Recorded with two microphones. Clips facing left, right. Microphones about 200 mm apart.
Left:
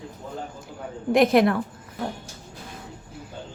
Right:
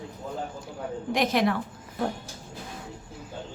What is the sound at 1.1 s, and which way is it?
Speech, 55° left (ahead or behind).